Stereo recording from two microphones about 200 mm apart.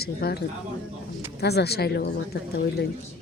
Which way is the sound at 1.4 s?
55° left (ahead or behind).